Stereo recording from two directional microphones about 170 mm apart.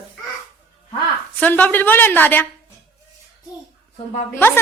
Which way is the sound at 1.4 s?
10° left (ahead or behind).